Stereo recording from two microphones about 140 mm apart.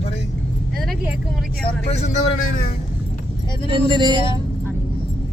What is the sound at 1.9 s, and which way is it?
Speech, 55° left (ahead or behind).